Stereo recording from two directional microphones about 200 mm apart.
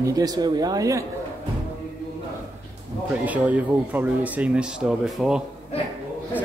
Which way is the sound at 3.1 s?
5° right (ahead or behind).